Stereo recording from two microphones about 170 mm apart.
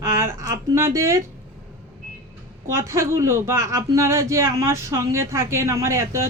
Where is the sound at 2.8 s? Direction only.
15° right (ahead or behind).